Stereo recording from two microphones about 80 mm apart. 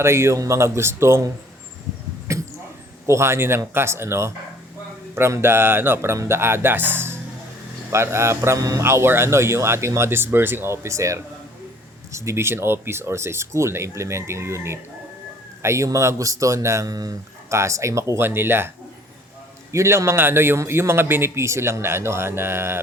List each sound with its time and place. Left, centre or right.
0.0 s a man's voice: right
2.3 s a sound: right
3.1 s a man's voice: right
8.8 s a man's voice: right
16.9 s speech: right
17.5 s a man's voice: right
19.7 s a man's voice: right